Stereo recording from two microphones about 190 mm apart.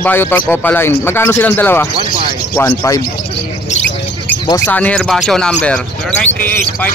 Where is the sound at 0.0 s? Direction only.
10° left (ahead or behind).